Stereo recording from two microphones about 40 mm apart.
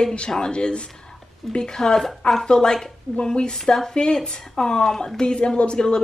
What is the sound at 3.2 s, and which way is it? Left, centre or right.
Speech, left.